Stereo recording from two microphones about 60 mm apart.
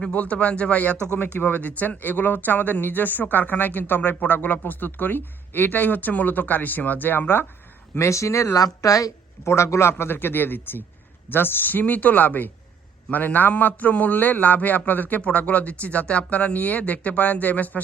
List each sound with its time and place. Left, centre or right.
0.0 s a man's voice: left
7.9 s speech: left
8.6 s a woman's voice: left
9.4 s a man's voice: left